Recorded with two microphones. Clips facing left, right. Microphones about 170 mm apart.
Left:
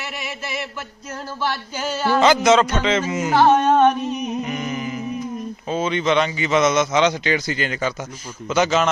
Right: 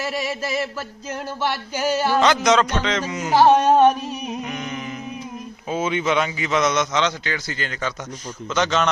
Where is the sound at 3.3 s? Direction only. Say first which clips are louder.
Right 1 dB; 15° right (ahead or behind).